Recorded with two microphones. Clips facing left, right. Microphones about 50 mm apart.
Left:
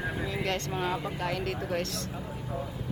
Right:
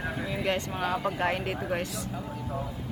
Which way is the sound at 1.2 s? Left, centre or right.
Right.